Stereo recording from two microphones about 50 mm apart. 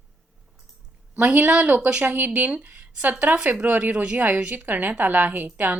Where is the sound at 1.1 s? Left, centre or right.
Right.